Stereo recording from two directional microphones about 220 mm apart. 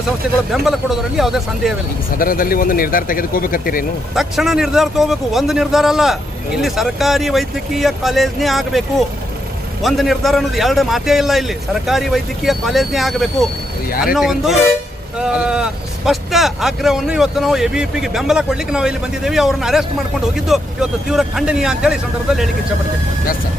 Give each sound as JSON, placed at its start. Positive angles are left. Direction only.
{"t": 0.5, "sound": "a man's voice", "side_deg": 0}
{"t": 2.1, "sound": "speech", "side_deg": 40}
{"t": 4.1, "sound": "a man's voice", "side_deg": 0}